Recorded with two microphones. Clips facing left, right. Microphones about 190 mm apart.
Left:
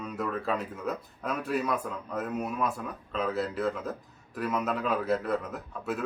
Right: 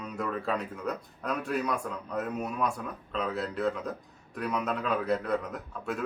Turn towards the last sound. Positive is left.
turn(degrees=0)  # may be behind; listen again after turning